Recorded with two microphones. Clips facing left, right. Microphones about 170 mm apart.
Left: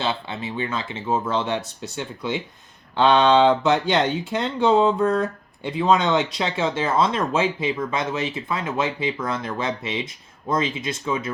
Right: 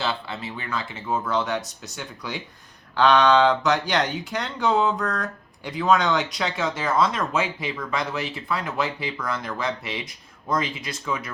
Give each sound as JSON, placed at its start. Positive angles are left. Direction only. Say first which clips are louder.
{"t": 0.0, "sound": "speech", "louder": "left 2 dB", "side_deg": 20}